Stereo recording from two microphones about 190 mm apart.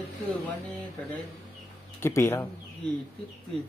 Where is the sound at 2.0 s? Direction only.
15° left (ahead or behind).